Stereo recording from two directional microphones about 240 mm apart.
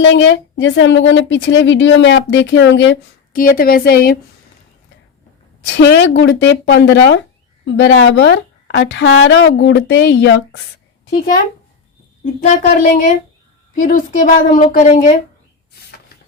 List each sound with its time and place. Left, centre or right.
0.0 s a woman's voice: left
3.3 s a woman's voice: left
5.6 s a woman's voice: left
12.2 s a woman's voice: left